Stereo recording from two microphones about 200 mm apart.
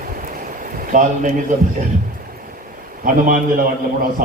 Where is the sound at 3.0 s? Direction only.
45° right (ahead or behind).